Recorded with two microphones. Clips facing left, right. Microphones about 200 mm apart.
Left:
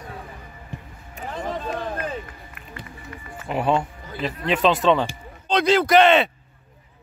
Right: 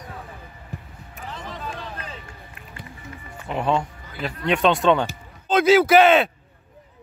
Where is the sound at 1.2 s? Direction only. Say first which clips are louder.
Left 7 dB; 50° left (ahead or behind).